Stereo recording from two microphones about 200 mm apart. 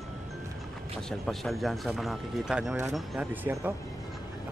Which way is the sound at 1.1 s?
Centre (ahead or behind).